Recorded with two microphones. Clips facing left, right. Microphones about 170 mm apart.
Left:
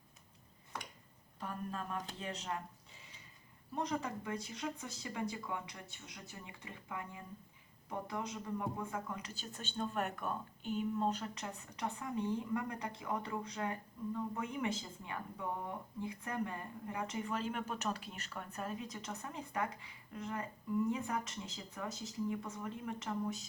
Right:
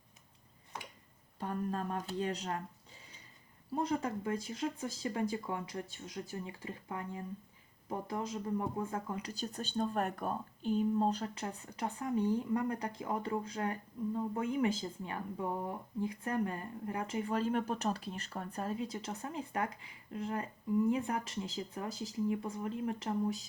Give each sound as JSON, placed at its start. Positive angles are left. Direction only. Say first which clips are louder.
{"t": 1.4, "sound": "speech", "louder": "right 6 dB", "side_deg": -35}
{"t": 3.8, "sound": "speech", "louder": "right 4 dB", "side_deg": -30}